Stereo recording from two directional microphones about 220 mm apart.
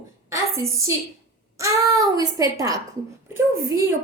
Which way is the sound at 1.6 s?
15° right (ahead or behind).